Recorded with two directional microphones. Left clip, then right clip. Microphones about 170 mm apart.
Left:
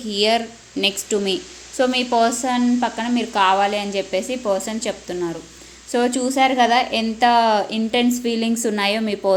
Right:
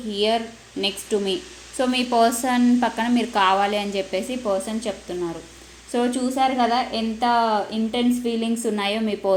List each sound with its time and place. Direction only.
0.1 s a woman's voice: 30° left (ahead or behind)
1.8 s a woman's voice: 15° left (ahead or behind)
4.4 s a woman's voice: 25° left (ahead or behind)